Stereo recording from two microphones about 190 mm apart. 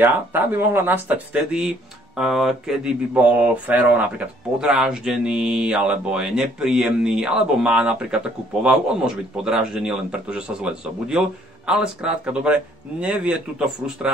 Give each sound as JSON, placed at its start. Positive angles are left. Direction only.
{"t": 0.0, "sound": "speech", "side_deg": -10}